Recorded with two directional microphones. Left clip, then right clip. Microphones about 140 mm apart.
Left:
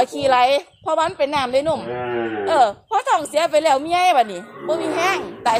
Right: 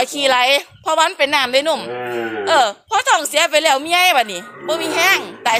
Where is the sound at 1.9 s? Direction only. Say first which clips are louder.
Right 1 dB; 10° right (ahead or behind).